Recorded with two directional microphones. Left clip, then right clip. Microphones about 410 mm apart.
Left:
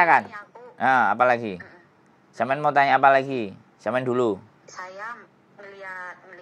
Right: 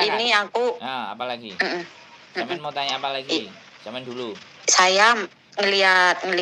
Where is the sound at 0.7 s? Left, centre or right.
Left.